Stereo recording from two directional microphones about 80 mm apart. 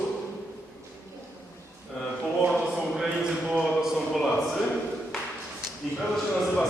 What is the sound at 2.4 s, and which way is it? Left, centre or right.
A man's voice, centre.